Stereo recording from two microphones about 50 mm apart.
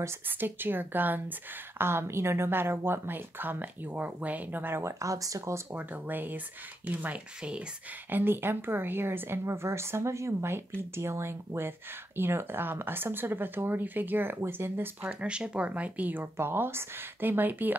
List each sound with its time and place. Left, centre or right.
0.3 s a woman's voice: right
1.8 s a woman's voice: right
4.8 s speech: right
5.8 s a woman's voice: right
8.1 s a woman's voice: right
9.4 s a woman's voice: right
15.0 s speech: right
16.3 s a woman's voice: right